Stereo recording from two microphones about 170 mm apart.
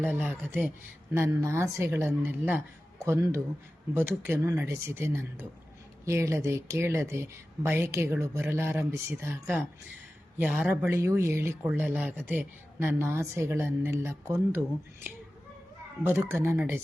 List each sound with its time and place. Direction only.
0.0 s speech: 10° right (ahead or behind)
16.3 s speech: 15° right (ahead or behind)